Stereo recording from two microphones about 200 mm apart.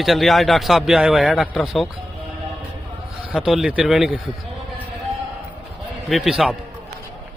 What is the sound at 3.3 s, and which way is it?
Speech, centre (ahead or behind).